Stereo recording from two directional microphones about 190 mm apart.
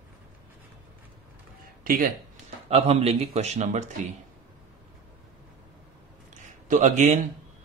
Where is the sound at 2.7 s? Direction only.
35° right (ahead or behind).